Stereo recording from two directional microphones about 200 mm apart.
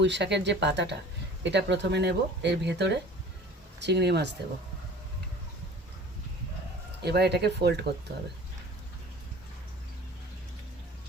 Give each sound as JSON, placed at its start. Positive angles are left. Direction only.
{"t": 0.0, "sound": "speech", "side_deg": -60}
{"t": 7.0, "sound": "speech", "side_deg": -55}